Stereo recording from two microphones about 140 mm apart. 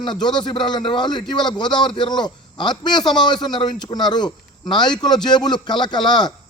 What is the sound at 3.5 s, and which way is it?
A man's voice, 30° left (ahead or behind).